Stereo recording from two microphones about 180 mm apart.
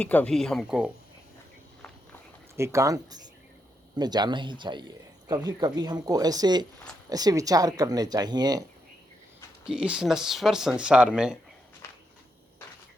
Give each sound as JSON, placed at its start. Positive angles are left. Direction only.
{"t": 0.0, "sound": "speech", "side_deg": 10}
{"t": 2.6, "sound": "speech", "side_deg": -15}
{"t": 9.6, "sound": "speech", "side_deg": -5}